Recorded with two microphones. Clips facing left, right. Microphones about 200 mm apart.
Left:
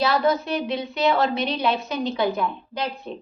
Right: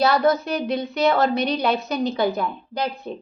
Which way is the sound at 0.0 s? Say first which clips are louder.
Right 2 dB; 40° right (ahead or behind).